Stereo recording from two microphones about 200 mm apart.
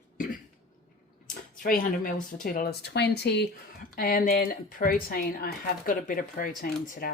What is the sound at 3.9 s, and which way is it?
Speech, 45° left (ahead or behind).